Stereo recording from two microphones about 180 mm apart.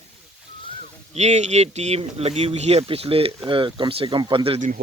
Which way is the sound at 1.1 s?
40° right (ahead or behind).